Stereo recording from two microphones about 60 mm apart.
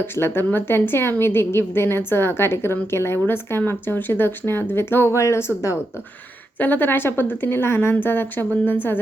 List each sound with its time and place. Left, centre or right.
0.0 s a woman's voice: left
6.6 s a woman's voice: left